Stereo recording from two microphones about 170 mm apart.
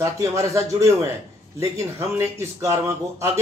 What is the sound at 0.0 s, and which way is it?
A man's voice, 20° right (ahead or behind).